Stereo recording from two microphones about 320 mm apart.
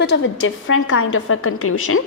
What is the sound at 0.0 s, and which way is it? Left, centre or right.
A woman's voice, left.